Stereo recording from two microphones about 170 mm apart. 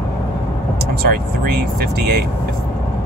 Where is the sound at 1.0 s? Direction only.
65° right (ahead or behind).